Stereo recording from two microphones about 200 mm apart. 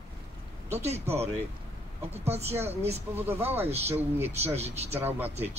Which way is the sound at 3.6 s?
30° right (ahead or behind).